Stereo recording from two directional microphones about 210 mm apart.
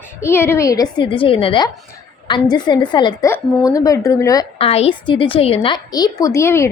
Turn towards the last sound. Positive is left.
turn(degrees=15)  # may be behind; listen again after turning